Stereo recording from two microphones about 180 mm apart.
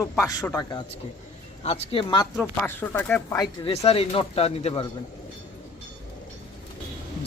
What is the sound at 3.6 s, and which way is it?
Speech, 35° left (ahead or behind).